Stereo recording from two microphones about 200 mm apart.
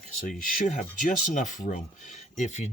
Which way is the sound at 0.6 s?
40° left (ahead or behind).